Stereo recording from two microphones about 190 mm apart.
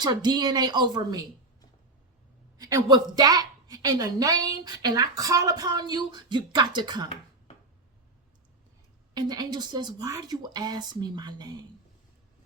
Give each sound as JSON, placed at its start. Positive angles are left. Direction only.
{"t": 0.0, "sound": "a woman's voice", "side_deg": -20}
{"t": 2.6, "sound": "a woman's voice", "side_deg": -20}
{"t": 9.1, "sound": "a woman's voice", "side_deg": -20}